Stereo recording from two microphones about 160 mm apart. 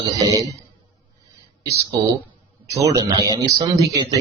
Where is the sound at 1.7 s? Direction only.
20° right (ahead or behind).